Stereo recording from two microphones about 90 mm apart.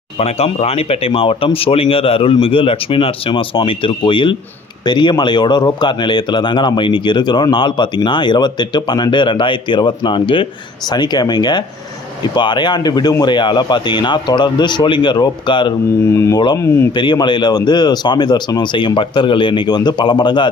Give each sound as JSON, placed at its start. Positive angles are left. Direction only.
{"t": 0.4, "sound": "speech", "side_deg": 90}
{"t": 10.8, "sound": "speech", "side_deg": 50}
{"t": 16.1, "sound": "speech", "side_deg": 30}
{"t": 16.9, "sound": "speech", "side_deg": 60}